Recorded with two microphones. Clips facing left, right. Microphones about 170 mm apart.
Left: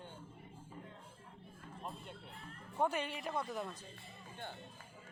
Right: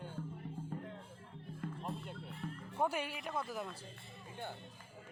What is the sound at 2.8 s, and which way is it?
Speech, 10° right (ahead or behind).